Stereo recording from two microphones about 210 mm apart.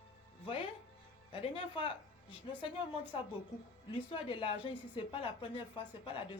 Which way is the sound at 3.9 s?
25° left (ahead or behind).